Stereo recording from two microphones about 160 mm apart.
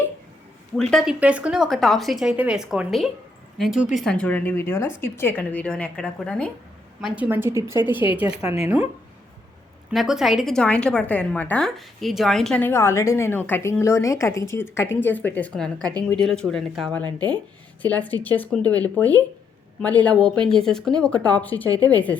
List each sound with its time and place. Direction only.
0.8 s speech: 5° left (ahead or behind)
1.2 s a woman's voice: 10° right (ahead or behind)
7.0 s a woman's voice: 10° right (ahead or behind)
8.4 s a woman's voice: 35° left (ahead or behind)
8.6 s a woman's voice: 15° right (ahead or behind)
9.9 s a woman's voice: centre (ahead or behind)
17.1 s speech: 25° right (ahead or behind)
17.8 s a woman's voice: 10° left (ahead or behind)